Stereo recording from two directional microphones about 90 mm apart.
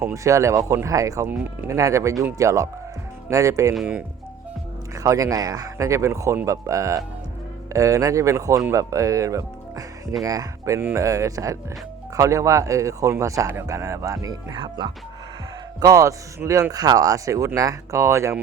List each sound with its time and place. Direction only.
0.0 s a man's voice: 35° right (ahead or behind)
5.0 s a man's voice: 40° right (ahead or behind)
14.5 s speech: 60° right (ahead or behind)
15.8 s a man's voice: 40° right (ahead or behind)